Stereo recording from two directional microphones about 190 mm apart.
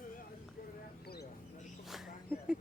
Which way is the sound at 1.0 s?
55° left (ahead or behind).